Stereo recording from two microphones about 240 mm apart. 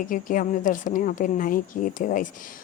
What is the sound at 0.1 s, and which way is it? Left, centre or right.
Speech, left.